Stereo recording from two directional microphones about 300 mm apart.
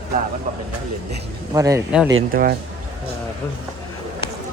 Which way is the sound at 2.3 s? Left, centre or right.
Right.